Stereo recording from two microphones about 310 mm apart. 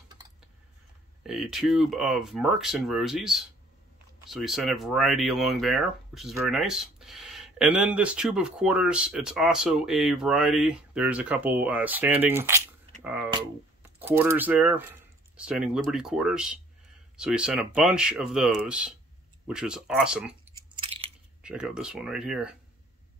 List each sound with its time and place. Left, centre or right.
1.2 s speech: centre
13.0 s a sound: centre
13.8 s speech: centre
20.7 s crunch: centre
21.4 s speech: centre